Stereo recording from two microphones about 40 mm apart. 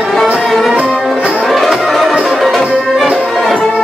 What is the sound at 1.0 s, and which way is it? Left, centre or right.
Music, centre.